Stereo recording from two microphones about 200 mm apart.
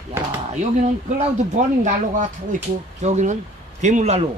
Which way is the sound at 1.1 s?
40° right (ahead or behind).